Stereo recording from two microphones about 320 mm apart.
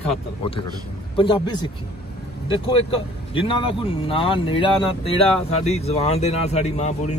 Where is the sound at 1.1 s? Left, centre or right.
Centre.